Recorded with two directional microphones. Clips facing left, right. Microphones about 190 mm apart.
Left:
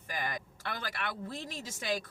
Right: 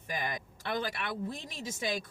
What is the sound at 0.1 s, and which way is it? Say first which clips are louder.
Speech: right 1 dB; 20° right (ahead or behind).